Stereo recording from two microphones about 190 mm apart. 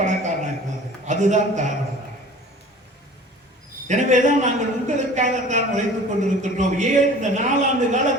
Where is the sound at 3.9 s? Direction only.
40° right (ahead or behind).